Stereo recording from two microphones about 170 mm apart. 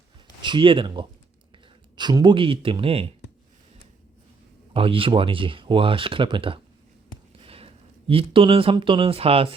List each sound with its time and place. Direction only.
0.4 s speech: 30° right (ahead or behind)
4.7 s speech: 35° right (ahead or behind)